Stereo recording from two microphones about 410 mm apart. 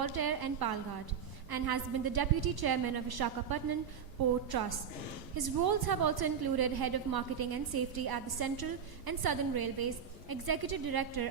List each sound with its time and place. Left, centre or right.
0.0 s a woman's voice: right